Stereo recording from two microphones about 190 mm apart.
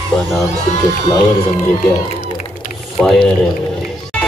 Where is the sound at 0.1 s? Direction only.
Centre (ahead or behind).